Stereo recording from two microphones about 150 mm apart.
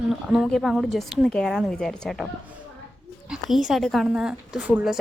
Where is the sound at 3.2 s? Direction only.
5° right (ahead or behind).